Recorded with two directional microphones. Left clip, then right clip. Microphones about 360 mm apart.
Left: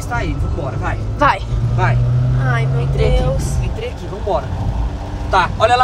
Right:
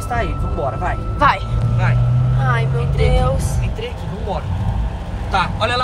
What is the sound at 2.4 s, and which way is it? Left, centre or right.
Speech, centre.